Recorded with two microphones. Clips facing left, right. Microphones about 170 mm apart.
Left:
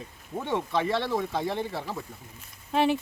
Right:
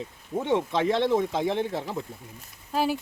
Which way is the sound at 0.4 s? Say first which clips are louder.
Right 3 dB; 20° right (ahead or behind).